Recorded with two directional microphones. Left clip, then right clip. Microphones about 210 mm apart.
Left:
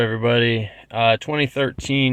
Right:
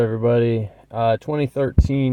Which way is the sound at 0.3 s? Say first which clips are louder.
Even; 15° right (ahead or behind).